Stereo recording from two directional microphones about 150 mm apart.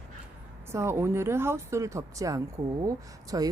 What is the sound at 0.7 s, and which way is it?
Speech, 20° right (ahead or behind).